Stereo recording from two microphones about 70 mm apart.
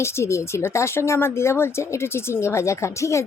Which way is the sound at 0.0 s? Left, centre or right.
Left.